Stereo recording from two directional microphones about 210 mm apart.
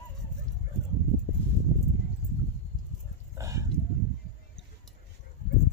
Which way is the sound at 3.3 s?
15° right (ahead or behind).